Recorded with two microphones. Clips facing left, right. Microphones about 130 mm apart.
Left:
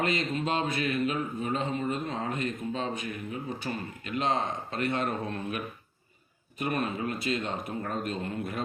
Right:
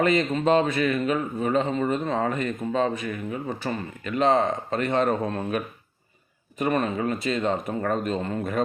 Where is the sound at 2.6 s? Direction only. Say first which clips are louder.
Right 8 dB; 40° right (ahead or behind).